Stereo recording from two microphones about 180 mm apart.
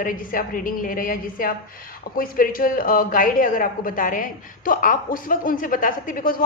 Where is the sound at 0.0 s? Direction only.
50° left (ahead or behind).